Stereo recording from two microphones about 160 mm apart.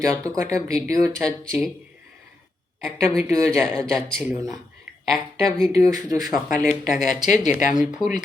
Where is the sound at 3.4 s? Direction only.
5° left (ahead or behind).